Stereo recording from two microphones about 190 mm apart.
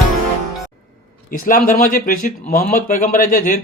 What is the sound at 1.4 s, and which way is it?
Speech, 45° left (ahead or behind).